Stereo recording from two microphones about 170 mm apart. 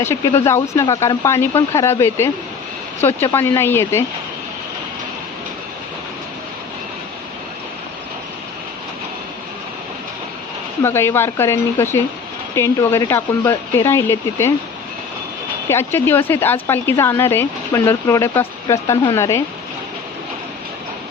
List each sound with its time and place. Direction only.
0.0 s speech: 15° left (ahead or behind)
10.8 s speech: 15° left (ahead or behind)
15.7 s speech: 15° left (ahead or behind)